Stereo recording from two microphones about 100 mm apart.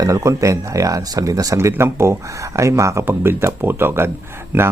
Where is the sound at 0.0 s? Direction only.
30° right (ahead or behind).